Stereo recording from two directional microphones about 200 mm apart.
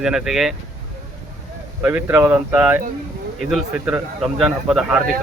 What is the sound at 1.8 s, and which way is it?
Speech, 10° right (ahead or behind).